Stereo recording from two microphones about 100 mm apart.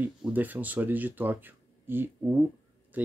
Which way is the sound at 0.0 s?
15° right (ahead or behind).